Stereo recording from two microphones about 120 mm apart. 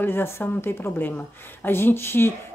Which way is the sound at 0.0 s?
20° left (ahead or behind).